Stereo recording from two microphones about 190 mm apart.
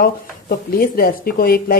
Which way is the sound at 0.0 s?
50° left (ahead or behind).